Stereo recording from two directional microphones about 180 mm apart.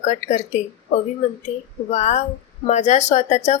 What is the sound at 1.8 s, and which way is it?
Speech, 40° left (ahead or behind).